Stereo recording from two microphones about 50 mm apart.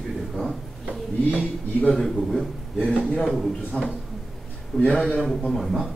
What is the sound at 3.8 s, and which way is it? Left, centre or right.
A man's voice, left.